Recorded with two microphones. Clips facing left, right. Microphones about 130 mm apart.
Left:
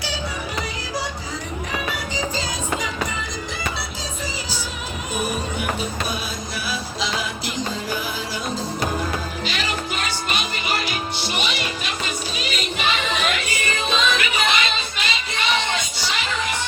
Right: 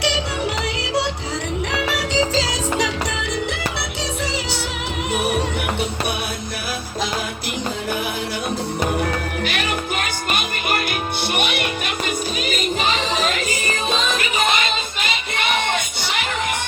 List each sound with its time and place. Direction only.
1.7 s music: 80° right
5.1 s music: 75° right (ahead or behind)
9.0 s music: 60° right (ahead or behind)